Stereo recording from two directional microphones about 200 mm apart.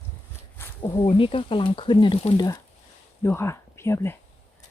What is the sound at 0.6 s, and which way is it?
Speech, 20° left (ahead or behind).